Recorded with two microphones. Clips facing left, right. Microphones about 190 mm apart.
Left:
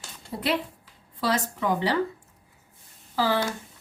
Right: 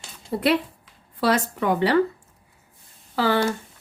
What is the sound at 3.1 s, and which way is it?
Speech, 65° right (ahead or behind).